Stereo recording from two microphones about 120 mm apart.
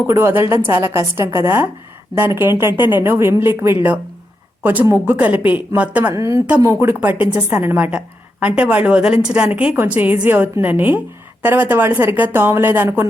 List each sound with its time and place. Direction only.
0.1 s a woman's voice: 20° right (ahead or behind)
6.1 s a woman's voice: 25° right (ahead or behind)